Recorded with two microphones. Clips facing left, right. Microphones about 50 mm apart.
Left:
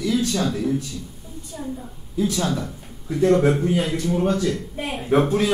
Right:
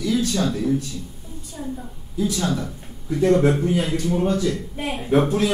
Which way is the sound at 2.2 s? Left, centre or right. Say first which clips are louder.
Left 1 dB; left.